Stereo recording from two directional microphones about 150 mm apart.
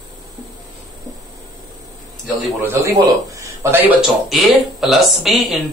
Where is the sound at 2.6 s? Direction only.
15° right (ahead or behind).